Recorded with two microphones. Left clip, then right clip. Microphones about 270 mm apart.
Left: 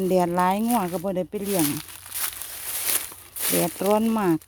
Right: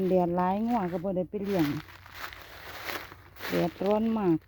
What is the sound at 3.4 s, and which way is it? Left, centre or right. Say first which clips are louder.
Speech: left 4 dB; centre.